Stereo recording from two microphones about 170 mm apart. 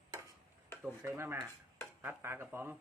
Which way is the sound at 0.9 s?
15° right (ahead or behind).